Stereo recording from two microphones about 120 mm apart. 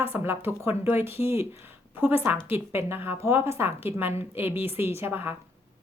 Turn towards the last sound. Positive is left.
turn(degrees=-15)  # may be behind; listen again after turning